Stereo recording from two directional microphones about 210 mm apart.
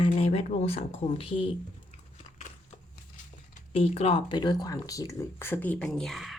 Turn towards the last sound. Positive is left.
turn(degrees=0)  # may be behind; listen again after turning